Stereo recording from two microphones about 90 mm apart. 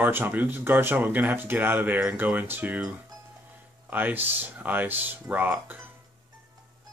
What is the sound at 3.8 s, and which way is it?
Speech, 20° right (ahead or behind).